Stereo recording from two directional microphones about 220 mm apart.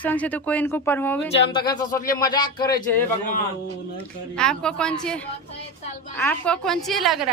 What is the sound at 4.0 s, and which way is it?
Speech, 5° left (ahead or behind).